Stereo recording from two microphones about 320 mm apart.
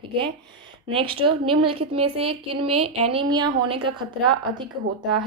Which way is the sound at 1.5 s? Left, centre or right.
Right.